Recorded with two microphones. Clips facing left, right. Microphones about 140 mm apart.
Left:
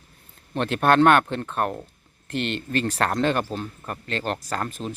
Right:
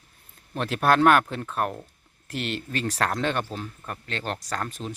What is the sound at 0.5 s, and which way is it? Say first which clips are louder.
Speech: left 3 dB; 5° right (ahead or behind).